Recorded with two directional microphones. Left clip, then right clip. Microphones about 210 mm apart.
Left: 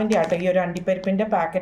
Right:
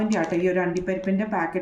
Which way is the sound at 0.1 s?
45° left (ahead or behind).